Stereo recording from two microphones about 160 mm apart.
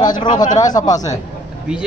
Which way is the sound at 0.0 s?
25° left (ahead or behind).